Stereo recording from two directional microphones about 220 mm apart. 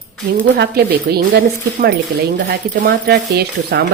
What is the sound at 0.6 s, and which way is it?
Speech, 45° right (ahead or behind).